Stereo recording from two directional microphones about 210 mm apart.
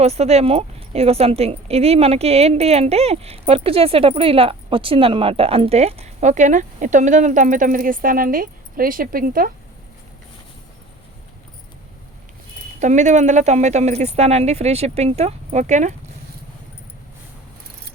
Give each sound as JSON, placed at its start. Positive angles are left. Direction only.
{"t": 0.0, "sound": "speech", "side_deg": -30}
{"t": 12.8, "sound": "speech", "side_deg": -35}